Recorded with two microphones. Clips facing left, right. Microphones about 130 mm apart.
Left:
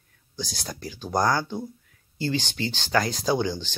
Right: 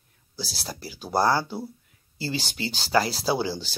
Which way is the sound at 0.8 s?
5° right (ahead or behind).